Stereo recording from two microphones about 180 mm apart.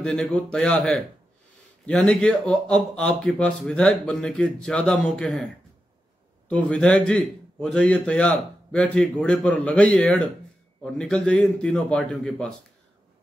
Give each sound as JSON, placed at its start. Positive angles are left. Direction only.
{"t": 0.0, "sound": "a man's voice", "side_deg": 5}
{"t": 6.5, "sound": "a man's voice", "side_deg": 5}